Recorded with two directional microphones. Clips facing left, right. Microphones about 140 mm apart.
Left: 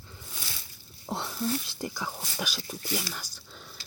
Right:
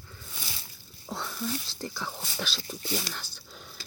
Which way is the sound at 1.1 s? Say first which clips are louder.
Left 2 dB; 20° left (ahead or behind).